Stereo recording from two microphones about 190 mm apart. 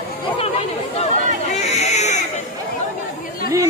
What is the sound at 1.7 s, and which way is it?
Baby cry, 35° left (ahead or behind).